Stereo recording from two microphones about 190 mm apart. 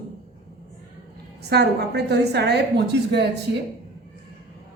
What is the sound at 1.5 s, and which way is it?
A woman's voice, 60° right (ahead or behind).